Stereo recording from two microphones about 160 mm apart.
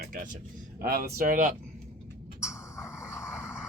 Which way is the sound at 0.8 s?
70° right (ahead or behind).